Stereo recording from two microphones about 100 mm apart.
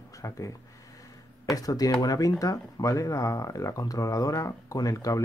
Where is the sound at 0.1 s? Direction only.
35° left (ahead or behind).